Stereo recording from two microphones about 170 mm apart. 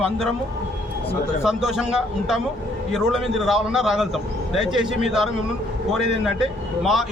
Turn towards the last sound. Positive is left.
turn(degrees=0)  # may be behind; listen again after turning